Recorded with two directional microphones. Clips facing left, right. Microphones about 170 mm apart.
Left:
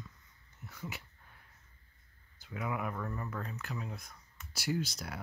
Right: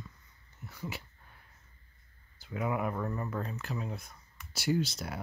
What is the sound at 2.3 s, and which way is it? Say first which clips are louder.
Speech: right 5 dB; 35° right (ahead or behind).